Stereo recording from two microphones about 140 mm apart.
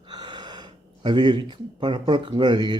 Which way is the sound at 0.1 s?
30° right (ahead or behind).